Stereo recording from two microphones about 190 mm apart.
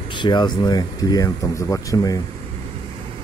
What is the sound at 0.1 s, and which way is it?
Speech, 25° left (ahead or behind).